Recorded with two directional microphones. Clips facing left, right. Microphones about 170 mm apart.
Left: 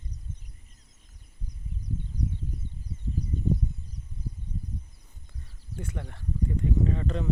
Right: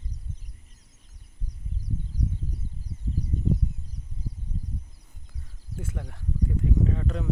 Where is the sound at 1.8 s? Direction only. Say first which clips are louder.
Right 1 dB; 90° right.